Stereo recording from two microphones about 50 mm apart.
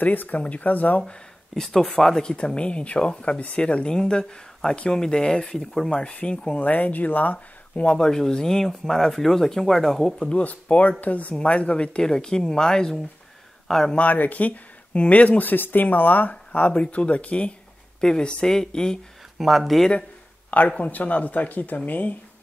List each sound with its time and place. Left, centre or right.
0.0 s speech: left
1.5 s speech: centre
2.3 s speech: left
5.9 s speech: left
6.6 s speech: left
7.9 s speech: centre
10.3 s speech: left; by 13.9 s centre
13.9 s speech: left
18.0 s speech: centre
19.3 s speech: centre
20.5 s speech: left